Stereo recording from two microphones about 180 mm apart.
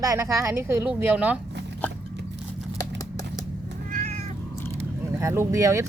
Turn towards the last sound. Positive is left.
turn(degrees=-15)  # may be behind; listen again after turning